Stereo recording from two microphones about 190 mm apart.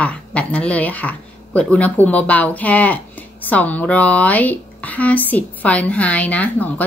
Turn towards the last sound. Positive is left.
turn(degrees=10)  # may be behind; listen again after turning